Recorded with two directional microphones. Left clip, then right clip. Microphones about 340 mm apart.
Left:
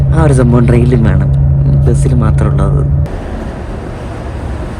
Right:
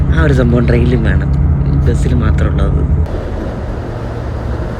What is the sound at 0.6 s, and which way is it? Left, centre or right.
Speech, centre.